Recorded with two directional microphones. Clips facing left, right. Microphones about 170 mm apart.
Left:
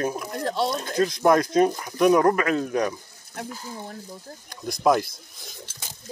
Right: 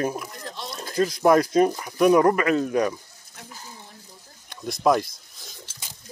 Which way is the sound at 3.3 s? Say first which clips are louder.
Left 9 dB; 60° left (ahead or behind).